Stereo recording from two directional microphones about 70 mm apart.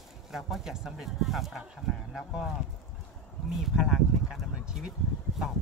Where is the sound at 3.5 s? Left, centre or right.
Centre.